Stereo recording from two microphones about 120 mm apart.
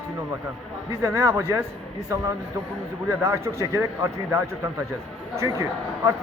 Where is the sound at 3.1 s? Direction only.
25° right (ahead or behind).